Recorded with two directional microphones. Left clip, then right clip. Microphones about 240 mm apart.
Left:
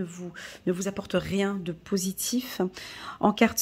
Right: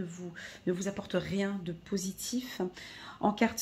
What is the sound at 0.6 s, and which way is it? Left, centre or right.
Speech, left.